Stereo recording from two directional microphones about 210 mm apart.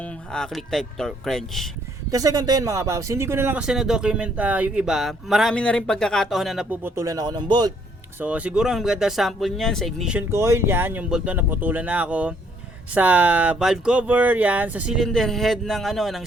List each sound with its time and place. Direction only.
0.0 s speech: 5° left (ahead or behind)
2.0 s speech: 15° right (ahead or behind)
8.2 s speech: 5° right (ahead or behind)